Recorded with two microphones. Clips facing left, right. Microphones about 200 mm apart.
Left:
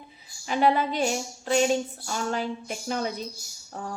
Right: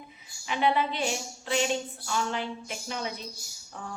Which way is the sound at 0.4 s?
40° left (ahead or behind).